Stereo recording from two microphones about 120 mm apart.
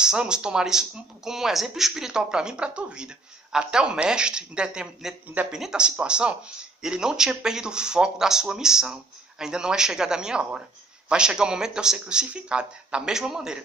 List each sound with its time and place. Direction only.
0.0 s speech: 5° right (ahead or behind)